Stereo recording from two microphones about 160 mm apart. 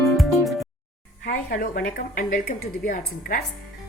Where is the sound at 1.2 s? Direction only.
65° left (ahead or behind).